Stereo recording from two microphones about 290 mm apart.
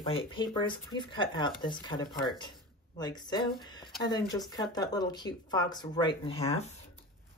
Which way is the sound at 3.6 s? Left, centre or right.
Centre.